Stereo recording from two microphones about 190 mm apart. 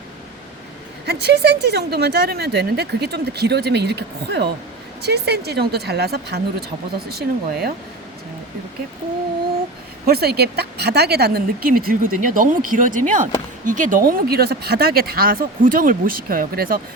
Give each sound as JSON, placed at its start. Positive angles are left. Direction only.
{"t": 1.0, "sound": "speech", "side_deg": -55}
{"t": 10.1, "sound": "a woman's voice", "side_deg": -55}